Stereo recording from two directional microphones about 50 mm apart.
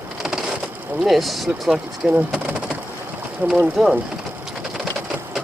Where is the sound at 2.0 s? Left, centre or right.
Centre.